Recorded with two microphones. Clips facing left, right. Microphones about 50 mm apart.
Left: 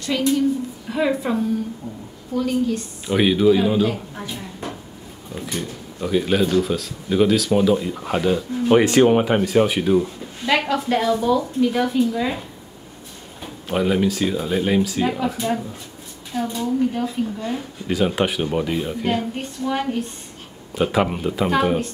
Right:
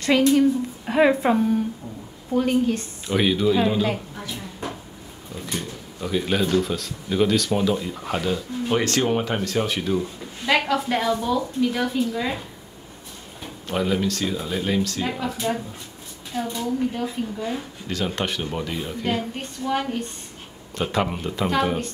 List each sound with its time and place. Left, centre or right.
0.0 s a woman's voice: right
2.3 s a woman's voice: right
3.1 s speech: centre
5.4 s speech: centre
10.4 s a woman's voice: centre
13.7 s speech: centre
16.3 s a woman's voice: centre
17.8 s speech: centre